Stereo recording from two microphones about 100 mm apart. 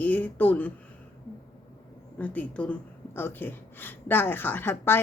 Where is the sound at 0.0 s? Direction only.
15° left (ahead or behind).